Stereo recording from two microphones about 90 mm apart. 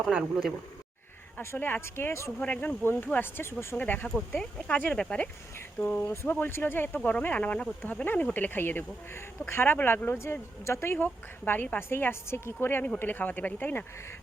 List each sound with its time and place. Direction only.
1.4 s speech: 25° left (ahead or behind)
2.4 s speech: 15° left (ahead or behind)